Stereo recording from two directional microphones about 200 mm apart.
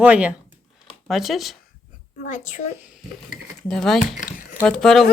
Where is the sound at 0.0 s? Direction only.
5° right (ahead or behind).